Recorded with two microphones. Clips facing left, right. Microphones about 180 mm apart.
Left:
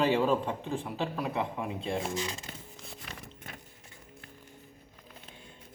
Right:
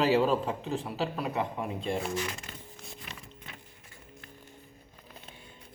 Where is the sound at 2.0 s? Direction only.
25° left (ahead or behind).